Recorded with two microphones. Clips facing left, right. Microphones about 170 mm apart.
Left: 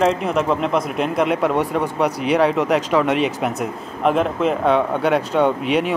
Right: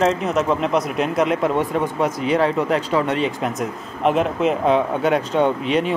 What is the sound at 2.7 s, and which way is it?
Speech, 90° left.